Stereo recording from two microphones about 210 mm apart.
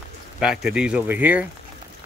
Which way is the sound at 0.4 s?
5° right (ahead or behind).